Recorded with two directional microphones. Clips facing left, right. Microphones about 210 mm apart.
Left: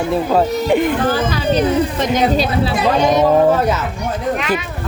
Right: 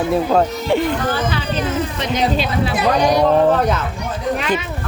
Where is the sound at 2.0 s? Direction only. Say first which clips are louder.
Left 4 dB; 45° left (ahead or behind).